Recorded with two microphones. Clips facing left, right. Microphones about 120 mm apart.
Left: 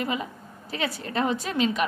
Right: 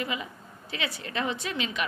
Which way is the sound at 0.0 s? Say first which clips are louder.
Left 4 dB; 40° left (ahead or behind).